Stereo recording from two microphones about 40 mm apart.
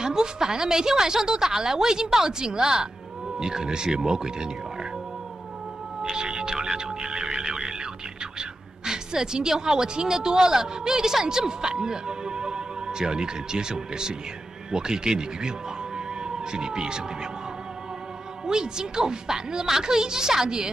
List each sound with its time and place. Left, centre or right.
0.0 s a woman's voice: centre
6.1 s speech: centre
6.6 s music: centre
8.4 s a woman's voice: centre
16.5 s speech: centre
18.4 s a woman's voice: centre